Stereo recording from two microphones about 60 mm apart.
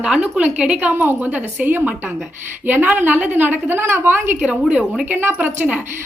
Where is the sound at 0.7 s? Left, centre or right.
Right.